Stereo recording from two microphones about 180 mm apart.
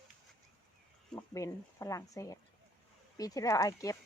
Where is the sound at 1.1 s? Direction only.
20° left (ahead or behind).